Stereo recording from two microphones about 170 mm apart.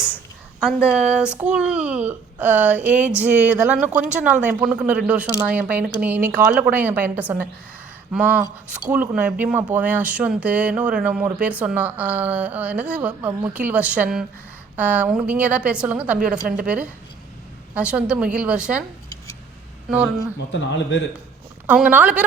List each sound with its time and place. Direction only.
0.6 s speech: 5° right (ahead or behind)
19.9 s speech: 5° right (ahead or behind)
20.5 s speech: 90° left
21.7 s speech: 10° right (ahead or behind)